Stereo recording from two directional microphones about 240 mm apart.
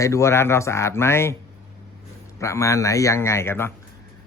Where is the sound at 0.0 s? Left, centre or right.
Centre.